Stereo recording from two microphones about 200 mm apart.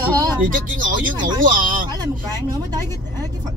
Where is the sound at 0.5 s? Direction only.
40° right (ahead or behind).